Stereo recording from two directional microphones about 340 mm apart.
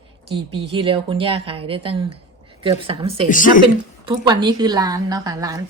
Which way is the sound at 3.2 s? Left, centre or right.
Left.